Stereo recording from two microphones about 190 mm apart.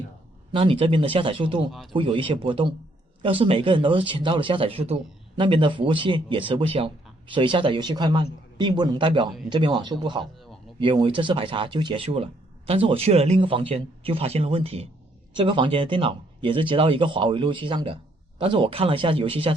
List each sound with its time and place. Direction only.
0.5 s speech: 30° right (ahead or behind)